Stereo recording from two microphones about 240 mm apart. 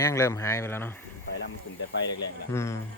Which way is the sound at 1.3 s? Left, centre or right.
Left.